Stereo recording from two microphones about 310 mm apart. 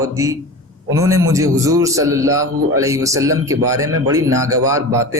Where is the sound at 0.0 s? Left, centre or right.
Centre.